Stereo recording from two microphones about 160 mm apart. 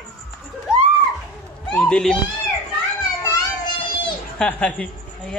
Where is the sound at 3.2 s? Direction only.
25° left (ahead or behind).